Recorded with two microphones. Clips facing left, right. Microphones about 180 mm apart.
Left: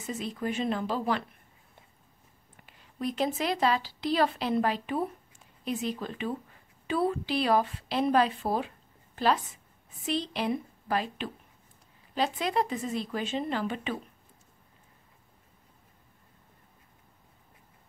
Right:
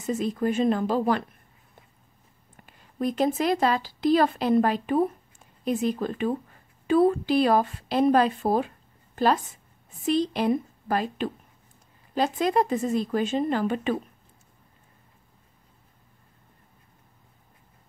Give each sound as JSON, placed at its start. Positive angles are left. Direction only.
{"t": 0.0, "sound": "a woman's voice", "side_deg": -45}
{"t": 2.6, "sound": "a woman's voice", "side_deg": -45}